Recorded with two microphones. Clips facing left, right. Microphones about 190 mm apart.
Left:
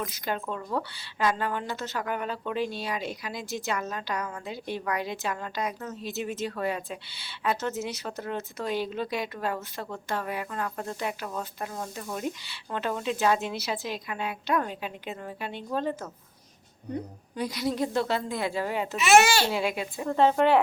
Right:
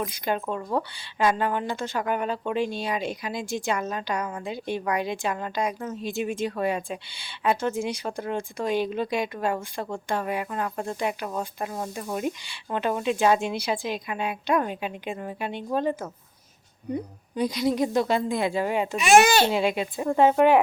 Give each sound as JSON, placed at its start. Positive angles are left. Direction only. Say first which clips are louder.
{"t": 0.3, "sound": "speech", "louder": "right 4 dB", "side_deg": -20}
{"t": 20.1, "sound": "speech", "louder": "right 3 dB", "side_deg": -10}